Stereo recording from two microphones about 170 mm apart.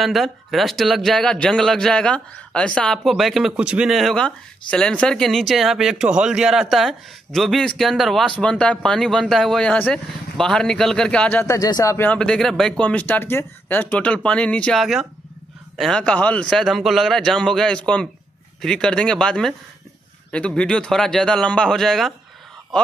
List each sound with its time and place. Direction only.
0.0 s a man's voice: centre (ahead or behind)